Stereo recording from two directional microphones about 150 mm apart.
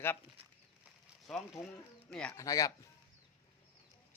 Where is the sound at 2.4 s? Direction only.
25° left (ahead or behind).